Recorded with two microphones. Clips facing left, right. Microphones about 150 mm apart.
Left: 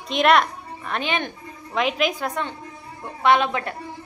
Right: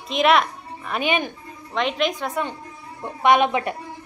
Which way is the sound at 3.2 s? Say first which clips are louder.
Right 2 dB; 15° right (ahead or behind).